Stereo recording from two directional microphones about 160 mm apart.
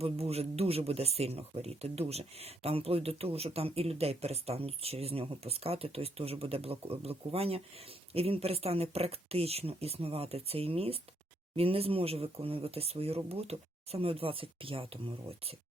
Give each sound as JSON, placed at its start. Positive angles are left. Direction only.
{"t": 0.0, "sound": "speech", "side_deg": -40}